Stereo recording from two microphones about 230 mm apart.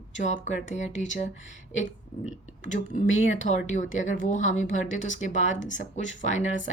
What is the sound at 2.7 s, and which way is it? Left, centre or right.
Speech, left.